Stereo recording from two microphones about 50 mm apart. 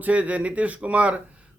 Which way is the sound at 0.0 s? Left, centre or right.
Right.